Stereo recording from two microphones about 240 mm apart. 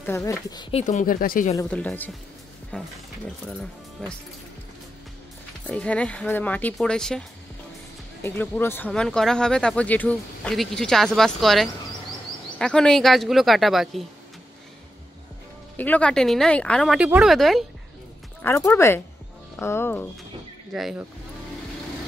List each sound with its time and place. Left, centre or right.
0.0 s speech: centre; by 1.5 s left
1.5 s speech: centre
4.0 s speech: centre
5.7 s speech: centre
15.7 s speech: centre
18.4 s speech: centre
20.7 s speech: centre